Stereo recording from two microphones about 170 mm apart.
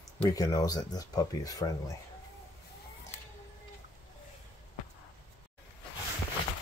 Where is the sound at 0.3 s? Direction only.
20° left (ahead or behind).